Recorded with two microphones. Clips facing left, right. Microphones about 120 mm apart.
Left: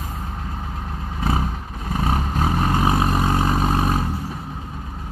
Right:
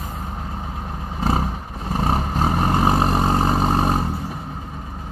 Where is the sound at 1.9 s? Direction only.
35° right (ahead or behind).